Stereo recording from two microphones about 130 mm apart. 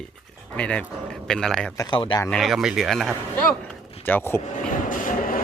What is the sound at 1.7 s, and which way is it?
Speech, 35° left (ahead or behind).